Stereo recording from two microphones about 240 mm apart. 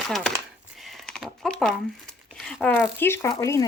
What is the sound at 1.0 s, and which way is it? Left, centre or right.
Typing, centre.